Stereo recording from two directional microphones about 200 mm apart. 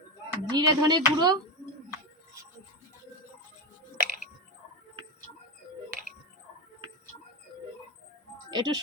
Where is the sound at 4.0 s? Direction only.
45° right (ahead or behind).